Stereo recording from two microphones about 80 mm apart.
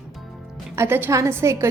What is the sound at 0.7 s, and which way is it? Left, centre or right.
Speech, right.